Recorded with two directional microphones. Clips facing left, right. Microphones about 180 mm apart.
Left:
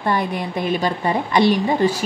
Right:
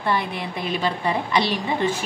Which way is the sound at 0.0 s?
45° left (ahead or behind).